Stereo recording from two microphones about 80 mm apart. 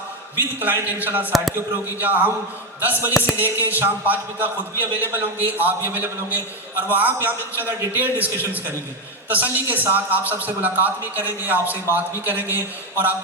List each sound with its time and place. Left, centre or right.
0.3 s a man's voice: right
9.6 s a man's voice: right